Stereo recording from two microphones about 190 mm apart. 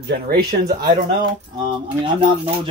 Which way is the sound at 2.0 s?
25° right (ahead or behind).